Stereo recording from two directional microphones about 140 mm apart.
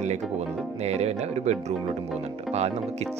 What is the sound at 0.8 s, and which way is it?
Speech, 50° right (ahead or behind).